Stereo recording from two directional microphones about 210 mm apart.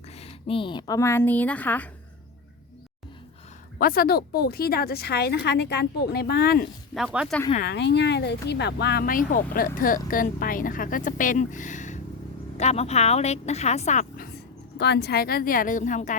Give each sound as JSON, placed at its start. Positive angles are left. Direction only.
{"t": 0.2, "sound": "speech", "side_deg": 25}
{"t": 3.8, "sound": "a woman's voice", "side_deg": 45}
{"t": 6.9, "sound": "speech", "side_deg": -5}
{"t": 7.6, "sound": "speech", "side_deg": 55}
{"t": 14.8, "sound": "a woman's voice", "side_deg": 50}